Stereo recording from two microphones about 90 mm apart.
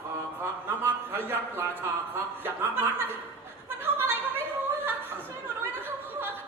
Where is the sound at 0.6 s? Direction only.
25° right (ahead or behind).